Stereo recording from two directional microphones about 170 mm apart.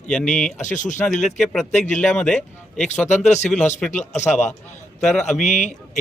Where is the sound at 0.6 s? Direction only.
45° left (ahead or behind).